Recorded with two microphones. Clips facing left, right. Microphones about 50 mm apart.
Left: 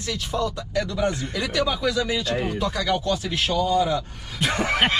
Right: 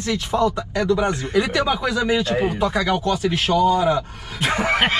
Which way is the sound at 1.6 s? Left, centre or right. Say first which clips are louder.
Right 2 dB; right.